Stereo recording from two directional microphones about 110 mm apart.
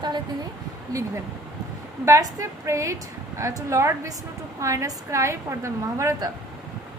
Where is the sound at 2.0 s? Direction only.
30° right (ahead or behind).